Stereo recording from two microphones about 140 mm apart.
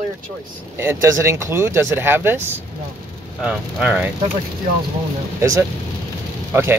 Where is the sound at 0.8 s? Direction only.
20° right (ahead or behind).